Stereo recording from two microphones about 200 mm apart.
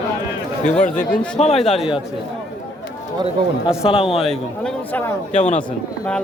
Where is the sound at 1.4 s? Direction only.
30° left (ahead or behind).